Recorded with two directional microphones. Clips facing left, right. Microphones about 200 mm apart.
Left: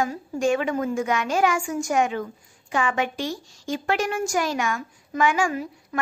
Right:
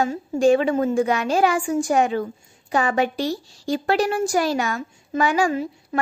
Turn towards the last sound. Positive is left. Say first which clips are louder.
# right 4 dB
turn(degrees=-35)  # may be behind; listen again after turning